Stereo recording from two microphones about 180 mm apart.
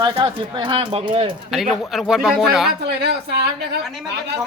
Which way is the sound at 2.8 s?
65° right (ahead or behind).